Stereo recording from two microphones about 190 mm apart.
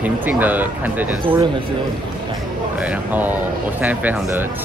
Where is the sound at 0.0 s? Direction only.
10° right (ahead or behind).